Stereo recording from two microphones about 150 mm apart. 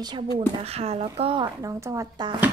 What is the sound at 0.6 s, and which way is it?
Speech, 45° right (ahead or behind).